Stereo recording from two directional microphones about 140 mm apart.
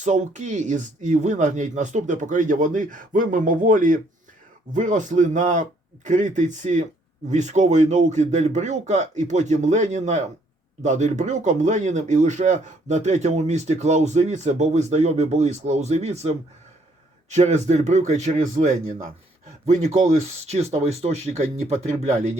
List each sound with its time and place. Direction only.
0.0 s speech: 60° right (ahead or behind)